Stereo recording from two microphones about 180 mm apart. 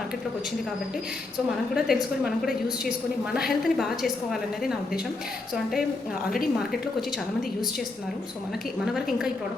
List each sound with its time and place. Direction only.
1.7 s a woman's voice: centre (ahead or behind)
8.8 s a woman's voice: centre (ahead or behind)